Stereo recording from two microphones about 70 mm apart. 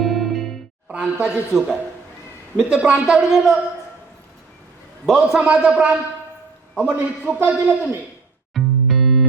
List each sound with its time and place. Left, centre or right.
0.0 s music: centre
0.9 s a man's voice: centre
5.0 s a man's voice: centre
7.3 s speech: right
8.5 s music: centre